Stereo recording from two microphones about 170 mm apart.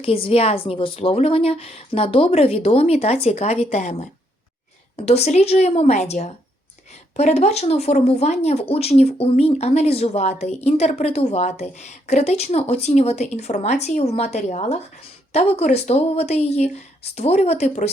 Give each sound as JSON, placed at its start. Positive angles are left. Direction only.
{"t": 0.0, "sound": "speech", "side_deg": 35}